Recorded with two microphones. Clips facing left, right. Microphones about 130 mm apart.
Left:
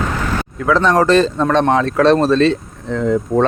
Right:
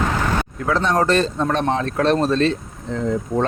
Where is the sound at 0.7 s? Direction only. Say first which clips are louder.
Left 6 dB; 90° left.